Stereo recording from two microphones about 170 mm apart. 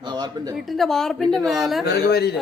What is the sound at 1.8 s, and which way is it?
Speech, 70° left (ahead or behind).